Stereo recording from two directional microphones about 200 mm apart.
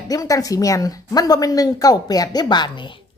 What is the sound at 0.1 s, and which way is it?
A woman's voice, 15° left (ahead or behind).